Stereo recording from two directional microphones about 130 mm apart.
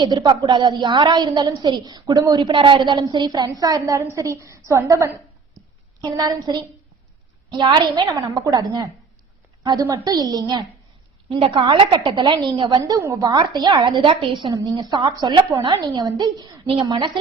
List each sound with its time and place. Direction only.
0.0 s a woman's voice: 35° right (ahead or behind)
2.5 s a woman's voice: 40° right (ahead or behind)
9.6 s a woman's voice: 25° right (ahead or behind)
11.3 s a woman's voice: 45° right (ahead or behind)
14.5 s a woman's voice: 25° right (ahead or behind)